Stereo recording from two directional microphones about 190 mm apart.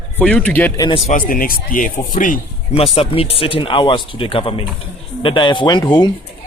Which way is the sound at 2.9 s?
30° left (ahead or behind).